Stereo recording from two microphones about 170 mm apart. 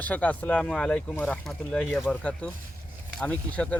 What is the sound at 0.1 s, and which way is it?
Speech, 10° left (ahead or behind).